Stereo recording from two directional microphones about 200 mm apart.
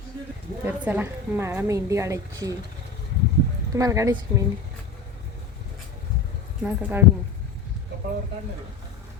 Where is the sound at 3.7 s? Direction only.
15° right (ahead or behind).